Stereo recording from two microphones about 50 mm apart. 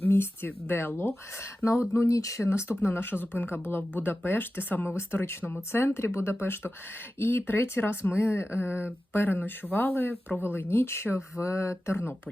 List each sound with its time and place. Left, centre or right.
0.0 s speech: left
1.4 s speech: left
1.9 s speech: left
2.5 s speech: left
4.9 s speech: left
6.4 s speech: left
9.1 s speech: left
11.4 s speech: left